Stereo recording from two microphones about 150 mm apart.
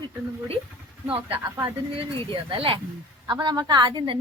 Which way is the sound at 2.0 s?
35° right (ahead or behind).